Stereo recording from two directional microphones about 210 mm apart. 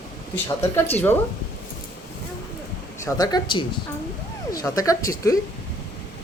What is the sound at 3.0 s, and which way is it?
A man's voice, 20° left (ahead or behind).